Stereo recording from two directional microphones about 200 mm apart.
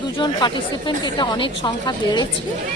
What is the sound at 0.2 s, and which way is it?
A woman's voice, 20° left (ahead or behind).